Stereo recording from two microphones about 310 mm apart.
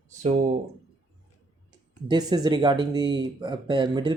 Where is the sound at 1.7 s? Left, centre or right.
Centre.